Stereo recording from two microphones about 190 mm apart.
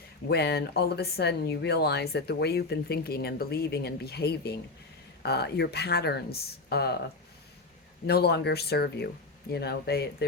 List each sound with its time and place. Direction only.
0.3 s speech: 60° left (ahead or behind)
8.0 s speech: 55° left (ahead or behind)